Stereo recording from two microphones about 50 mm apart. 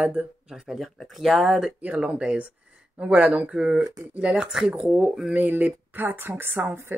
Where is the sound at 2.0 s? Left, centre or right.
Centre.